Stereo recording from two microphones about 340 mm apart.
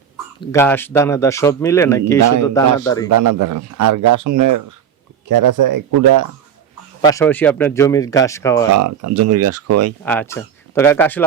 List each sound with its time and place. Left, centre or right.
0.3 s speech: centre
3.1 s speech: right
7.0 s speech: centre
8.7 s speech: right
10.0 s speech: centre